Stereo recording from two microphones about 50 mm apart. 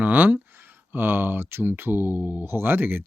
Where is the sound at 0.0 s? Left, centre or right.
Right.